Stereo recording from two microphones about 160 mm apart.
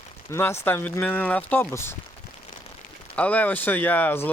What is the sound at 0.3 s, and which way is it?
Speech, 15° left (ahead or behind).